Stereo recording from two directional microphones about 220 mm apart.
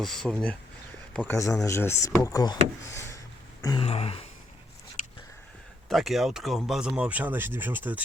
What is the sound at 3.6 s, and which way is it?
Throat clearing, 15° left (ahead or behind).